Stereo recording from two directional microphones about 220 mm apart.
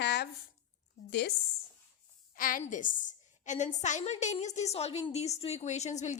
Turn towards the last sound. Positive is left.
turn(degrees=30)  # may be behind; listen again after turning